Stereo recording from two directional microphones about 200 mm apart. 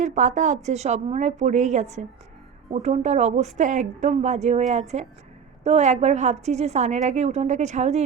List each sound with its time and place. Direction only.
0.0 s a woman's voice: 40° right (ahead or behind)